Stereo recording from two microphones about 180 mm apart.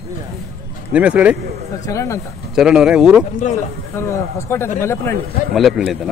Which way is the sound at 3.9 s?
15° left (ahead or behind).